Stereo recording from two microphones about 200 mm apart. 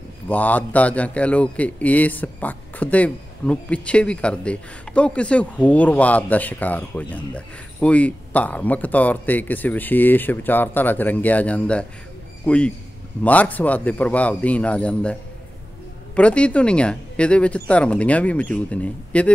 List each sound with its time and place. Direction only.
0.3 s a man's voice: 10° left (ahead or behind)
16.2 s a man's voice: 5° left (ahead or behind)